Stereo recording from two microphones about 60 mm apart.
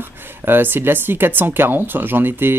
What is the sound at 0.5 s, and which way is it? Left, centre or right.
Speech, right.